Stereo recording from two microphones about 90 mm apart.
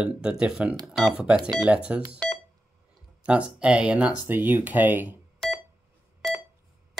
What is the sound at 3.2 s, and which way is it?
Speech, 10° right (ahead or behind).